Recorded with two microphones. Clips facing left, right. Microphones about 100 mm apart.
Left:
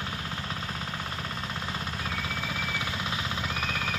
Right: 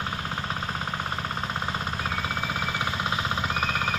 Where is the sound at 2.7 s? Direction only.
45° right (ahead or behind).